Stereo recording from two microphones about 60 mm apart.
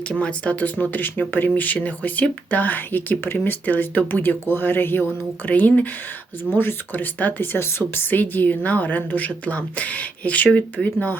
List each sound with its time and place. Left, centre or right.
0.1 s a woman's voice: centre